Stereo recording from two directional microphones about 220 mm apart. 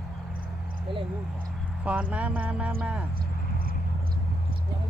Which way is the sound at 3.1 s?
40° right (ahead or behind).